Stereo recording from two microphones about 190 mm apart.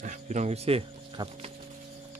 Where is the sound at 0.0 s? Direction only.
40° right (ahead or behind).